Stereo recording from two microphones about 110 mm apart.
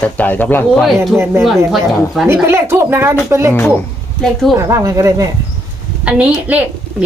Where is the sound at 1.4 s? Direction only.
Centre (ahead or behind).